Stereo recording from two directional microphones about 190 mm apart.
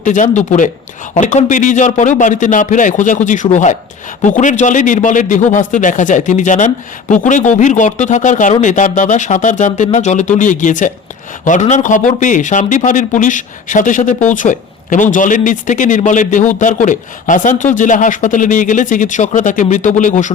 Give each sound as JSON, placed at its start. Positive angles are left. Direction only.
{"t": 0.0, "sound": "speech", "side_deg": 40}